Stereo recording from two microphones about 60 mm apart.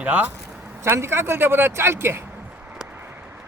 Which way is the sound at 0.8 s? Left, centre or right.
Right.